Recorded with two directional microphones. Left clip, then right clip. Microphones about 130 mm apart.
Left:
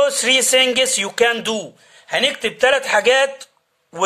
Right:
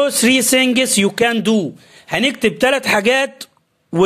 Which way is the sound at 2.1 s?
55° right (ahead or behind).